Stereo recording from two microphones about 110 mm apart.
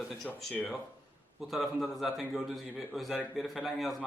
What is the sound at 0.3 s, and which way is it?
Speech, 15° left (ahead or behind).